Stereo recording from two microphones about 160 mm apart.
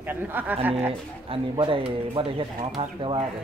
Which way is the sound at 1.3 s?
35° right (ahead or behind).